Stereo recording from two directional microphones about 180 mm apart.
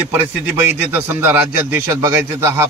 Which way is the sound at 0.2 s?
10° right (ahead or behind).